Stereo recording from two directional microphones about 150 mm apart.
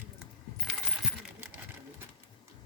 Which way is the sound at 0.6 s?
5° left (ahead or behind).